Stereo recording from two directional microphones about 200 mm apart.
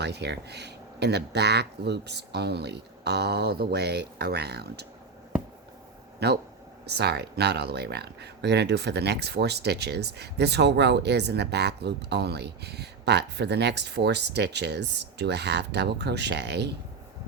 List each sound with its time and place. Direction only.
0.0 s speech: 55° right (ahead or behind)
6.1 s speech: 55° right (ahead or behind)